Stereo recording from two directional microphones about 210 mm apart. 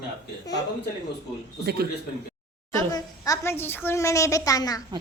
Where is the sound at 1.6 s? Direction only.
50° right (ahead or behind).